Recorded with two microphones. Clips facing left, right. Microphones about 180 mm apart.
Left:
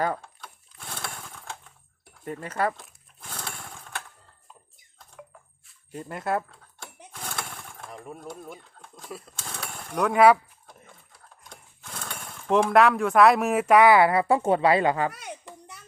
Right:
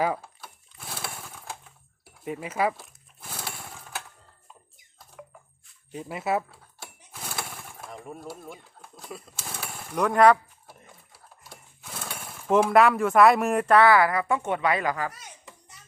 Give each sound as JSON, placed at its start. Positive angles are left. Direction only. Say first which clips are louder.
{"t": 0.0, "sound": "sewing machine", "louder": "right 1 dB", "side_deg": -5}
{"t": 2.0, "sound": "speech", "louder": "right 1 dB", "side_deg": -5}
{"t": 2.8, "sound": "chainsaw", "louder": "right 1 dB", "side_deg": -5}
{"t": 5.2, "sound": "music", "louder": "right 1 dB", "side_deg": 0}
{"t": 5.9, "sound": "speech", "louder": "right 1 dB", "side_deg": -5}
{"t": 7.1, "sound": "engine", "louder": "even", "side_deg": -5}
{"t": 10.7, "sound": "a sound", "louder": "even", "side_deg": -5}
{"t": 15.1, "sound": "children playing", "louder": "left 8 dB", "side_deg": 65}